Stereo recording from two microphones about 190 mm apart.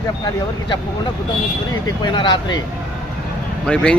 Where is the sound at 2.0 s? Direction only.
25° left (ahead or behind).